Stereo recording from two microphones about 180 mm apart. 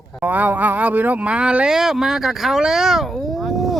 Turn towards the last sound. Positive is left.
turn(degrees=0)  # may be behind; listen again after turning